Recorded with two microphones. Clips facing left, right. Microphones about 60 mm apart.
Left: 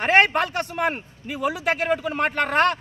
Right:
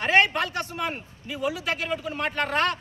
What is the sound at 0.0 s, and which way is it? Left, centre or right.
A man's voice, left.